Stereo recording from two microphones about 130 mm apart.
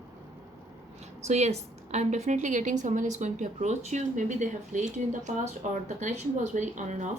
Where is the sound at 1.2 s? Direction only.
60° right (ahead or behind).